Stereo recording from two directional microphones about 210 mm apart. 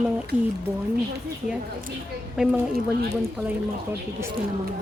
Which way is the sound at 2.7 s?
45° right (ahead or behind).